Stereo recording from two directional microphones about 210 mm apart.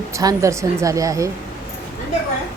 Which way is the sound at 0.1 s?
15° right (ahead or behind).